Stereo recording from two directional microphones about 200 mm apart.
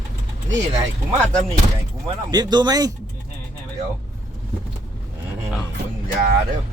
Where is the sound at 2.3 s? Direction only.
20° right (ahead or behind).